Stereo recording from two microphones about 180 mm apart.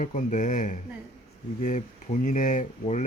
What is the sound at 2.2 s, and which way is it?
Speech, 45° left (ahead or behind).